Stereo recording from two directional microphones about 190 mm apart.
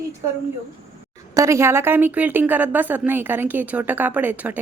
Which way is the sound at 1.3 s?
15° right (ahead or behind).